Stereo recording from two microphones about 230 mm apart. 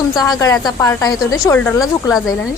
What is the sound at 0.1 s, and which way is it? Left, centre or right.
A woman's voice, centre.